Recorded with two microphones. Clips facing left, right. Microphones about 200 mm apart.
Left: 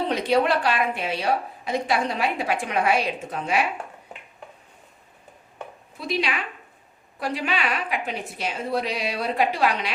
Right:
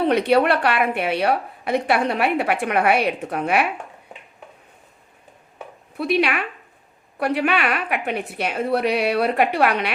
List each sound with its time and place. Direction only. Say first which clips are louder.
0.0 s a woman's voice: right 5 dB; 65° right (ahead or behind)
6.0 s a woman's voice: right 6 dB; 60° right (ahead or behind)